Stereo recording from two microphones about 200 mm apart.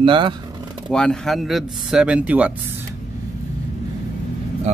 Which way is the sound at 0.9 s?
5° left (ahead or behind).